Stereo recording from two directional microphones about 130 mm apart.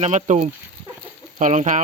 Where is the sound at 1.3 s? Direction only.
75° right (ahead or behind).